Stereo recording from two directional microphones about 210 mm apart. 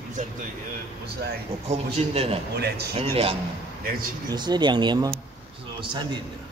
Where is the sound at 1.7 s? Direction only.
30° right (ahead or behind).